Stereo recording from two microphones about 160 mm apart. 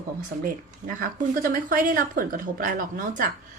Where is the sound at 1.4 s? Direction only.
60° right (ahead or behind).